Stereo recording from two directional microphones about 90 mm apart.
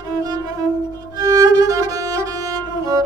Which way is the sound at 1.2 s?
45° right (ahead or behind).